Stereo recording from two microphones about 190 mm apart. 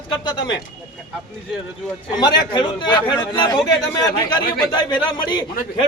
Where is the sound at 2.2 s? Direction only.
20° left (ahead or behind).